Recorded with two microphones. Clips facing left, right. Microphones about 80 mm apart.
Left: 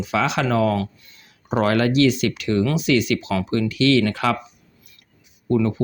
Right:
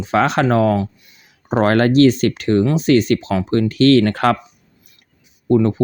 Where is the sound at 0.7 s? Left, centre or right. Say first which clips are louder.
Right 4 dB; centre.